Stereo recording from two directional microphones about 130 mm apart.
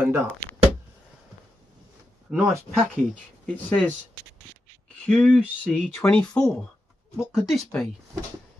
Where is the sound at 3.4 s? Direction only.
10° left (ahead or behind).